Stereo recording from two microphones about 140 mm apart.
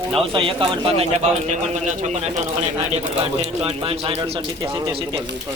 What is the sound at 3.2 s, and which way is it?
Speech, 40° right (ahead or behind).